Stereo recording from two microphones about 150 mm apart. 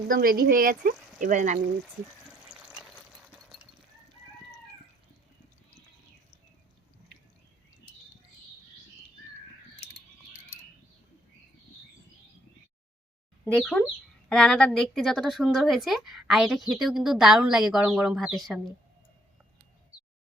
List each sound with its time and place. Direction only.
0.1 s speech: 75° right (ahead or behind)
1.2 s speech: 55° right (ahead or behind)
2.0 s a sound: 5° right (ahead or behind)
13.5 s speech: 5° left (ahead or behind)